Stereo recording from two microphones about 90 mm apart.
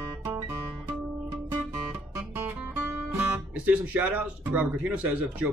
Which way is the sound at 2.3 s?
20° right (ahead or behind).